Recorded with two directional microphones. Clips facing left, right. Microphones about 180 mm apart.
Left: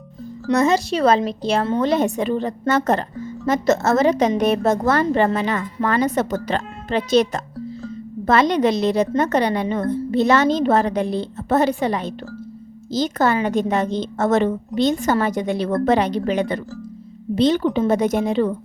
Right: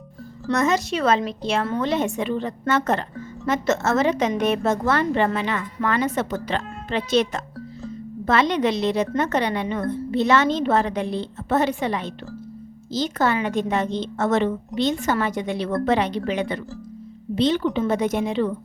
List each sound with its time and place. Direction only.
0.5 s a woman's voice: 30° left (ahead or behind)